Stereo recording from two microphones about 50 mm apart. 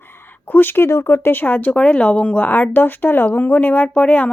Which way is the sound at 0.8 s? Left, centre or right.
Left.